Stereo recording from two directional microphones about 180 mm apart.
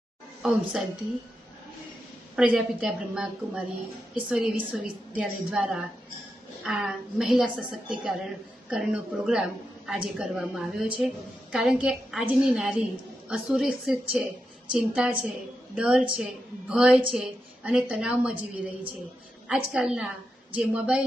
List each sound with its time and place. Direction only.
0.4 s a woman's voice: 5° right (ahead or behind)
2.3 s a woman's voice: 5° right (ahead or behind)
19.5 s a woman's voice: 5° right (ahead or behind)